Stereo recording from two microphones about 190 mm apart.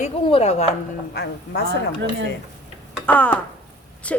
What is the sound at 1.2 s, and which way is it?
Speech, 55° left (ahead or behind).